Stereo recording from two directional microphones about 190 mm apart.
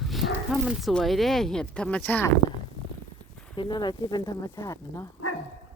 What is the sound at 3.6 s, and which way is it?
Speech, 25° left (ahead or behind).